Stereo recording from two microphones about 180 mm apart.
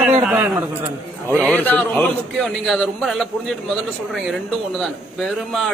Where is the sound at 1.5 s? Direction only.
10° left (ahead or behind).